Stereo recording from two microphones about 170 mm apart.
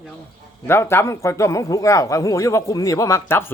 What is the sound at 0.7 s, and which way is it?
Speech, 15° left (ahead or behind).